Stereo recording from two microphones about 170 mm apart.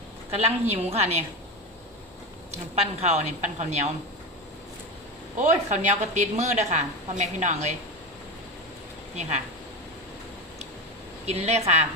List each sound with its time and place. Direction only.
0.3 s a woman's voice: 35° right (ahead or behind)
2.7 s a woman's voice: 40° right (ahead or behind)
5.4 s a woman's voice: 45° right (ahead or behind)
11.3 s a woman's voice: 40° right (ahead or behind)